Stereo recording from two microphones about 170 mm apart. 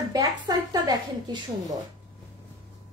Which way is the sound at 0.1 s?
20° right (ahead or behind).